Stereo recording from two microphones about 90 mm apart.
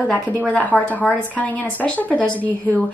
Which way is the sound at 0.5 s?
15° left (ahead or behind).